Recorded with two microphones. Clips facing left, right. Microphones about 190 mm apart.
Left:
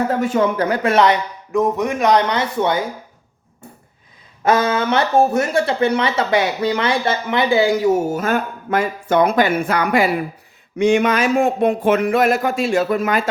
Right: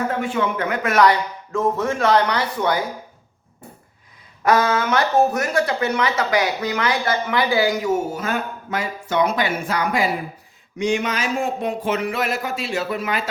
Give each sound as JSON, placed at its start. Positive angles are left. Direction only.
{"t": 0.2, "sound": "speech", "side_deg": 40}
{"t": 4.4, "sound": "speech", "side_deg": 25}
{"t": 8.1, "sound": "speech", "side_deg": 50}